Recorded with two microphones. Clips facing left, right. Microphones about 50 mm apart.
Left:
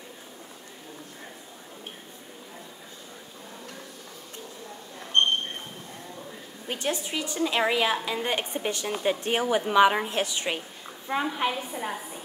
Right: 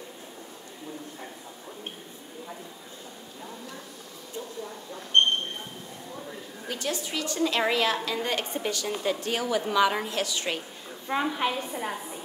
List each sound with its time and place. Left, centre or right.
6.7 s a woman's voice: left
11.1 s a woman's voice: centre